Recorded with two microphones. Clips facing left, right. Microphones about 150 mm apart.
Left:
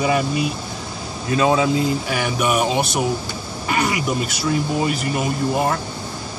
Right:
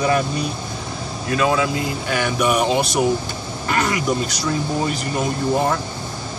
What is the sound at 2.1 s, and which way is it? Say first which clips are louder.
Speech: right 5 dB; 5° left (ahead or behind).